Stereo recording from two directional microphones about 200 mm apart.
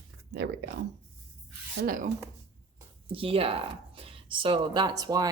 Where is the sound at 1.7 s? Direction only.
50° right (ahead or behind).